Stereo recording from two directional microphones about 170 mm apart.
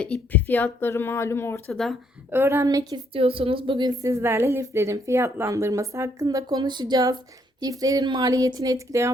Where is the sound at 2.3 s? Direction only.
15° right (ahead or behind).